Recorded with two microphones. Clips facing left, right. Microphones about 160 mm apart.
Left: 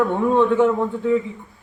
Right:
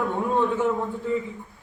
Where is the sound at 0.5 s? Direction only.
70° left (ahead or behind).